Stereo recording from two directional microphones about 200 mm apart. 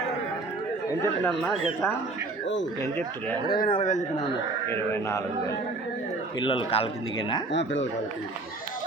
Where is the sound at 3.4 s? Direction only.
45° left (ahead or behind).